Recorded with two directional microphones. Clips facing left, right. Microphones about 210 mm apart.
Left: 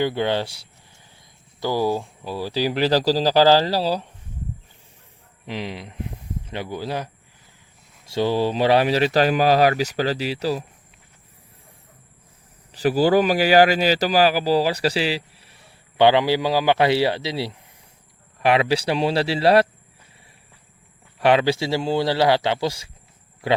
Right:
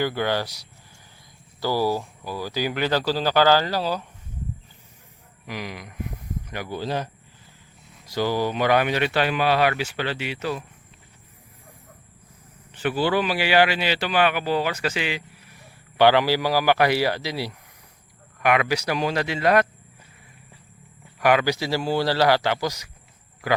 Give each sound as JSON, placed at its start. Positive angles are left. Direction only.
{"t": 0.0, "sound": "speech", "side_deg": 25}
{"t": 5.5, "sound": "speech", "side_deg": 25}
{"t": 6.4, "sound": "a sound", "side_deg": 25}
{"t": 6.7, "sound": "speech", "side_deg": 10}
{"t": 8.0, "sound": "speech", "side_deg": 25}
{"t": 12.7, "sound": "speech", "side_deg": 35}
{"t": 21.2, "sound": "speech", "side_deg": 30}